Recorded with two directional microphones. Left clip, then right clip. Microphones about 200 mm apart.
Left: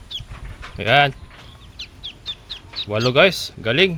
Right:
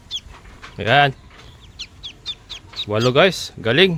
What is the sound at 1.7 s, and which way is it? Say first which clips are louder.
Chicken: even; 25° right (ahead or behind).